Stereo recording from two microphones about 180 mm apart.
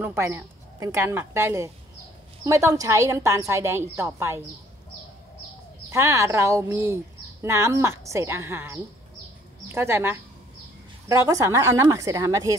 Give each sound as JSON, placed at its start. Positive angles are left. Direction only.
{"t": 0.0, "sound": "a woman's voice", "side_deg": -15}
{"t": 5.9, "sound": "a woman's voice", "side_deg": -15}